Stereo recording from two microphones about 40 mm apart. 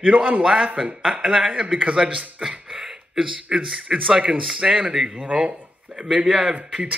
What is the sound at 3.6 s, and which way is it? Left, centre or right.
Speech, right.